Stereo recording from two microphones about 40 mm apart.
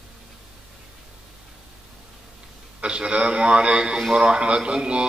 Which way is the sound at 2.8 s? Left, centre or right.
Right.